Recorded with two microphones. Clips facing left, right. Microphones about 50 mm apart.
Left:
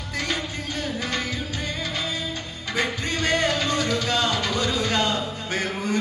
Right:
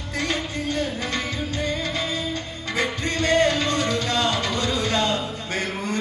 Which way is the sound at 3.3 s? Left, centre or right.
Right.